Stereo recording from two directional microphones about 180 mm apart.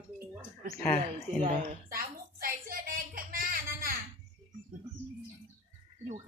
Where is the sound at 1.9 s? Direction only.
50° right (ahead or behind).